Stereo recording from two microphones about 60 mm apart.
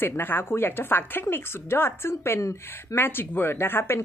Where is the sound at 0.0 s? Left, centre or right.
Left.